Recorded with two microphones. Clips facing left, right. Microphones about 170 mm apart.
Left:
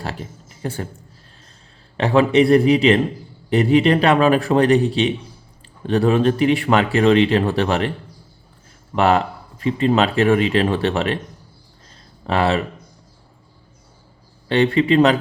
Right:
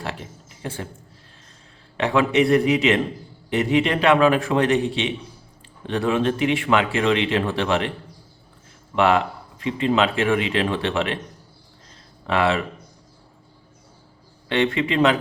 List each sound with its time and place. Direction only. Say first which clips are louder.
0.0 s a sound: left 2 dB; 40° left (ahead or behind)
2.0 s speech: left 4 dB; 35° left (ahead or behind)
9.0 s speech: left 2 dB; 40° left (ahead or behind)
12.2 s speech: left 2 dB; 35° left (ahead or behind)
14.4 s speech: left 5 dB; 35° left (ahead or behind)